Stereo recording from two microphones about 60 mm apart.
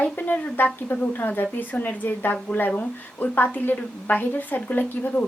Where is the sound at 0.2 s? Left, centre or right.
Left.